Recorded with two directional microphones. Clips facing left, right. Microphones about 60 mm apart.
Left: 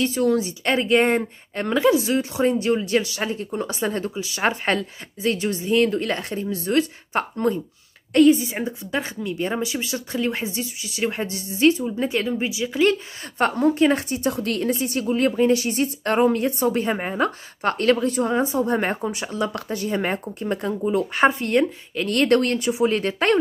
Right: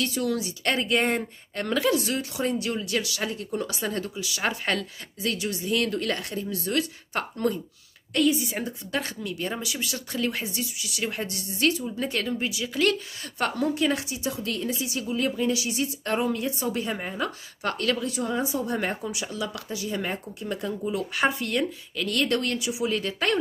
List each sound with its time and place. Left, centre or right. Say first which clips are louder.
0.0 s a woman's voice: left 7 dB; left
13.4 s a woman's voice: left 7 dB; left